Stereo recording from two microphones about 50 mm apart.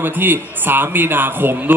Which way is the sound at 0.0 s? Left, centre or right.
Right.